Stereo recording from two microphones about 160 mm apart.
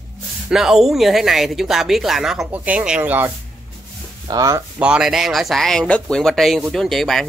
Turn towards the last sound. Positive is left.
turn(degrees=0)  # may be behind; listen again after turning